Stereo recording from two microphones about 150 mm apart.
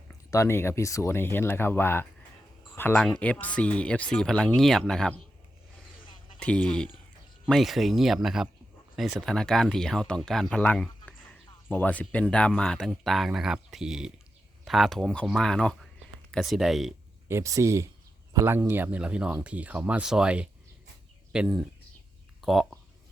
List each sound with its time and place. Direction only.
0.1 s speech: 20° left (ahead or behind); by 5.2 s 5° left (ahead or behind)
6.4 s speech: 5° left (ahead or behind)
17.2 s speech: 20° right (ahead or behind)
22.4 s a sound: centre (ahead or behind)